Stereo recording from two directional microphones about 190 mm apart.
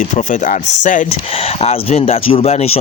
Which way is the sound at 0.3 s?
40° left (ahead or behind).